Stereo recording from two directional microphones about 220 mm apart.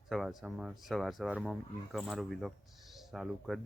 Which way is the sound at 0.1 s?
Centre (ahead or behind).